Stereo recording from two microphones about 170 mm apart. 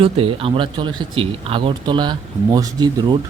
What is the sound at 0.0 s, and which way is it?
Speech, 35° right (ahead or behind).